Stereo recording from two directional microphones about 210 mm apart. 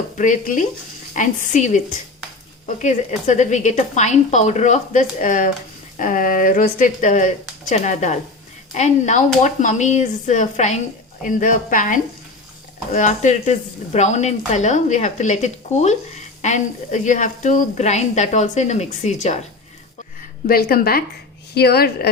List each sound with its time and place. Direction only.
0.2 s speech: 40° left (ahead or behind)
20.5 s a woman's voice: 45° left (ahead or behind)